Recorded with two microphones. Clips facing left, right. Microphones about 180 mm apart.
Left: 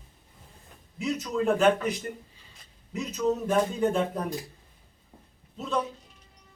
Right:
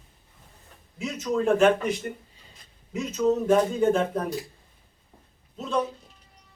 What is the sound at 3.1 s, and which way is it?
A man's voice, centre (ahead or behind).